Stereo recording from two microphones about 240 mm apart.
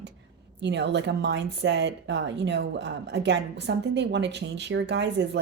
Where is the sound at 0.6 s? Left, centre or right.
Right.